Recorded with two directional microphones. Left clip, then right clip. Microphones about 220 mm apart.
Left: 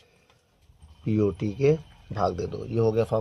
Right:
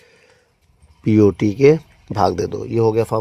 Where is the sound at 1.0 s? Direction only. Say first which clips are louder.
Right 12 dB; 45° right (ahead or behind).